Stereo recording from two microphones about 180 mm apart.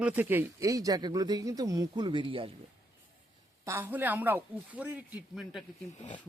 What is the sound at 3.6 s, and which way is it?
Speech, 10° right (ahead or behind).